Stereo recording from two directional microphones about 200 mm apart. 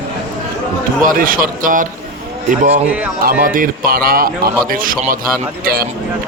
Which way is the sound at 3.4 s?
45° right (ahead or behind).